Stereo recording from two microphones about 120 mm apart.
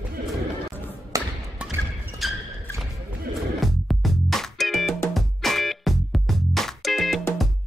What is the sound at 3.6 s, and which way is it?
Music, centre (ahead or behind).